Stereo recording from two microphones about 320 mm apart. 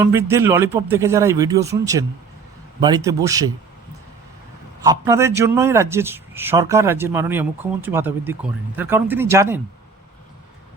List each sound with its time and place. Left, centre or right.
0.0 s a man's voice: centre
4.8 s a man's voice: centre